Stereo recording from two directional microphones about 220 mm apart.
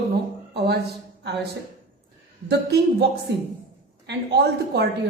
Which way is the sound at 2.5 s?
50° right (ahead or behind).